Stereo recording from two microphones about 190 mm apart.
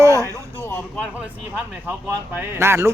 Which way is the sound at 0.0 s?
15° right (ahead or behind).